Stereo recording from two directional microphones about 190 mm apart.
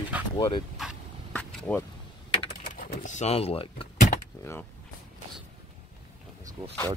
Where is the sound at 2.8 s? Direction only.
40° left (ahead or behind).